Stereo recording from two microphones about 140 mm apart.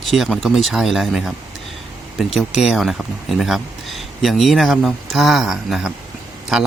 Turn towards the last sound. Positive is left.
turn(degrees=0)  # may be behind; listen again after turning